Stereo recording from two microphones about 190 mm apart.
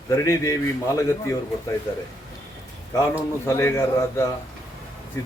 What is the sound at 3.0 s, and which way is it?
A man's voice, 15° left (ahead or behind).